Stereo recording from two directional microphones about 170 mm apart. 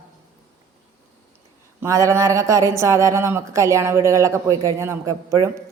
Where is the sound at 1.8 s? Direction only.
20° right (ahead or behind).